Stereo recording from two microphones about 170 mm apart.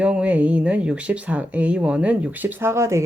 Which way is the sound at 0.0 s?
5° right (ahead or behind).